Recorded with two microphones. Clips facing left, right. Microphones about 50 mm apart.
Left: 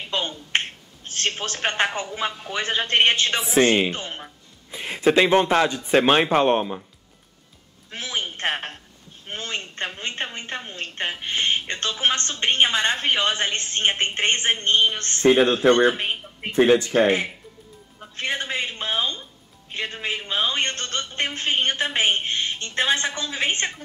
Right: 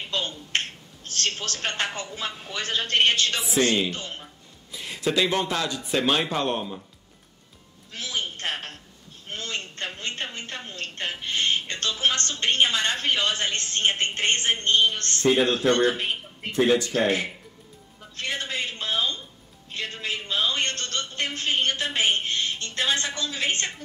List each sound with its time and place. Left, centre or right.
0.1 s a woman's voice: left
7.9 s a sound: left
9.3 s a woman's voice: left